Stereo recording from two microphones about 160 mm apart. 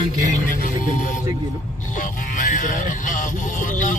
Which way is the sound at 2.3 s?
55° left (ahead or behind).